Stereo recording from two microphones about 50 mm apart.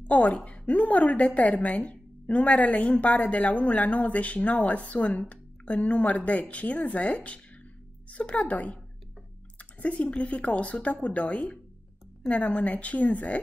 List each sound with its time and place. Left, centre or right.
0.0 s a woman's voice: left
9.6 s squish: left
10.0 s a woman's voice: left